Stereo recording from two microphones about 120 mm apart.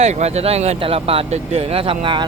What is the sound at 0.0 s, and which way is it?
Speech, 65° right (ahead or behind).